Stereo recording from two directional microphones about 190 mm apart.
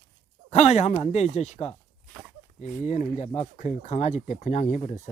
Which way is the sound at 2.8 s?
40° left (ahead or behind).